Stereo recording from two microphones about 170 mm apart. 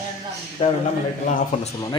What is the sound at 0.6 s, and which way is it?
Speech, 40° left (ahead or behind).